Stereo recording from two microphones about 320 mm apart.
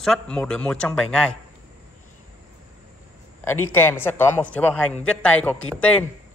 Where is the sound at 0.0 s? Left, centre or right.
Centre.